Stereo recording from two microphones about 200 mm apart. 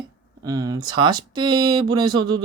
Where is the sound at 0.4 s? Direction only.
20° right (ahead or behind).